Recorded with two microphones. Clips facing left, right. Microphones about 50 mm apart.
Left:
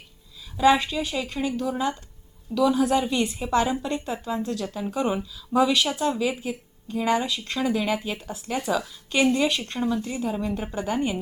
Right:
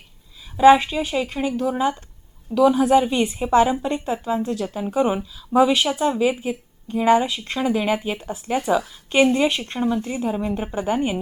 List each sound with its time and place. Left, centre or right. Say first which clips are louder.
0.5 s a woman's voice: right 7 dB; right